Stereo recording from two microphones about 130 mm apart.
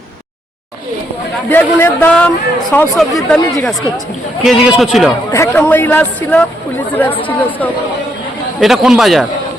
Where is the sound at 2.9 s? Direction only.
Centre (ahead or behind).